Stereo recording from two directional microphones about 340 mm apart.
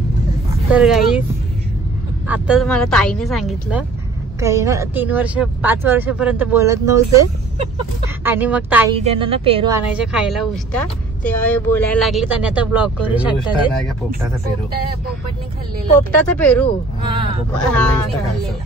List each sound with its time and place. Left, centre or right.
0.7 s speech: centre
2.2 s speech: centre
8.9 s a woman's voice: centre
9.9 s speech: centre
16.0 s speech: centre
17.6 s speech: centre